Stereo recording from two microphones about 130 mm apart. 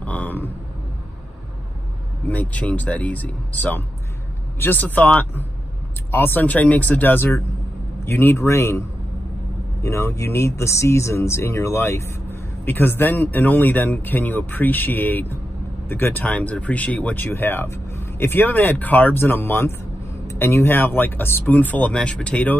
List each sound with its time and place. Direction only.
0.0 s a sound: 10° left (ahead or behind)
2.2 s a man's voice: 10° left (ahead or behind)
9.8 s speech: 20° left (ahead or behind)